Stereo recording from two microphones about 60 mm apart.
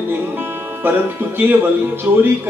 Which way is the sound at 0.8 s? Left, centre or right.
Right.